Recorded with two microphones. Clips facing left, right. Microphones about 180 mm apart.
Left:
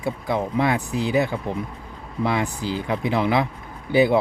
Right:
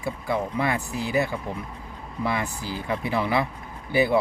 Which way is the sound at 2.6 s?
20° left (ahead or behind).